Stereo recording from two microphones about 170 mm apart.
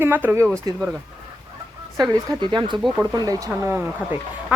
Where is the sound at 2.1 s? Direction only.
25° right (ahead or behind).